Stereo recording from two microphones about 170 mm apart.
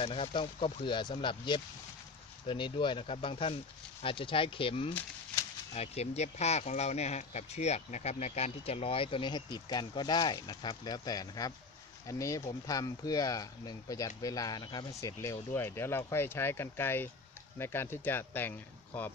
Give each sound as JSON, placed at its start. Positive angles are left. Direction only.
{"t": 0.0, "sound": "speech", "side_deg": 30}